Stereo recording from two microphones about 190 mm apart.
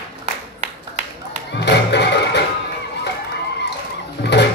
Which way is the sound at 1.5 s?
65° left (ahead or behind).